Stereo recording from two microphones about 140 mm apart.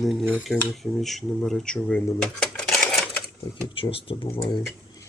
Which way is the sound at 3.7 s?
40° left (ahead or behind).